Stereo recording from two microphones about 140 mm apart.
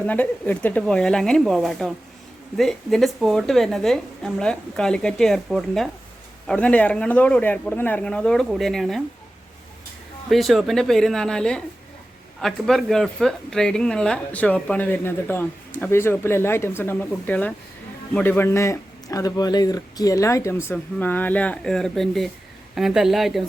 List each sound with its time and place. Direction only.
0.0 s a woman's voice: 10° left (ahead or behind)
10.2 s a woman's voice: centre (ahead or behind)